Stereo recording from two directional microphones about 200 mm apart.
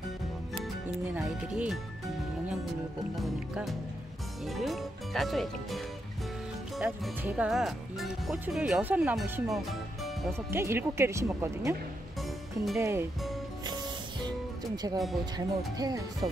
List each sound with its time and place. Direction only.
1.1 s speech: 5° right (ahead or behind)
3.2 s speech: centre (ahead or behind)
6.8 s speech: 5° right (ahead or behind)
10.5 s speech: 10° right (ahead or behind)
12.7 s speech: 15° right (ahead or behind)
15.3 s speech: 20° right (ahead or behind)